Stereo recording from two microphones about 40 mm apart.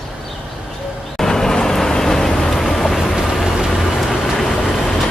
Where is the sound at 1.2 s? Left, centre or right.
Centre.